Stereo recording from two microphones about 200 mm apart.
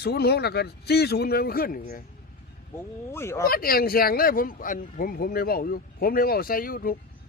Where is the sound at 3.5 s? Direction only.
50° left (ahead or behind).